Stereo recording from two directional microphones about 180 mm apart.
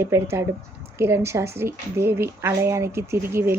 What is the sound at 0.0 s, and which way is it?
A woman's voice, 15° right (ahead or behind).